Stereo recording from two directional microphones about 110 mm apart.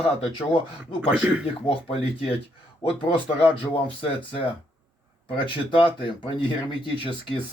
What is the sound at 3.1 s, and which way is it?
Speech, 55° left (ahead or behind).